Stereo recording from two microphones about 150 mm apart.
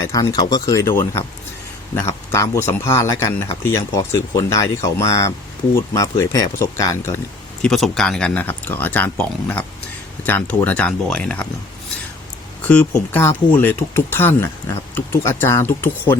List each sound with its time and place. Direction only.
0.0 s speech: 20° left (ahead or behind)
7.6 s speech: 5° left (ahead or behind)
12.6 s speech: 10° left (ahead or behind)